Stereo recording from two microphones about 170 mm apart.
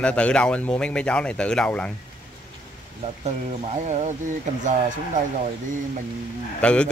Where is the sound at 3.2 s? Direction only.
40° right (ahead or behind).